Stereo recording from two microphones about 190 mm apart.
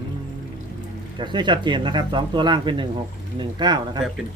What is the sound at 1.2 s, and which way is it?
Speech, 25° right (ahead or behind).